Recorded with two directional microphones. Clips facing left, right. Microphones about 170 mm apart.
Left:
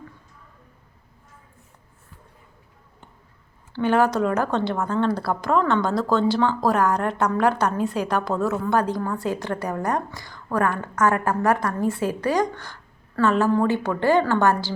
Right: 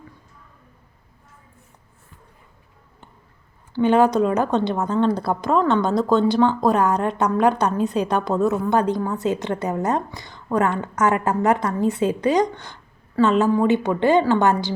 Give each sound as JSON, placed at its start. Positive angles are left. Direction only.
{"t": 3.7, "sound": "a woman's voice", "side_deg": -20}